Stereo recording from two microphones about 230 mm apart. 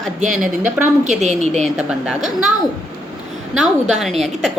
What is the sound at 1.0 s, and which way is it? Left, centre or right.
Speech, right.